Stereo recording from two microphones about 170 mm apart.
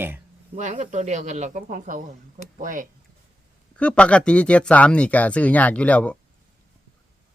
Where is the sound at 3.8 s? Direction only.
5° left (ahead or behind).